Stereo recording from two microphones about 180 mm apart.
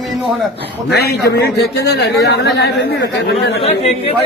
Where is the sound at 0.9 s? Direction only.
65° left (ahead or behind).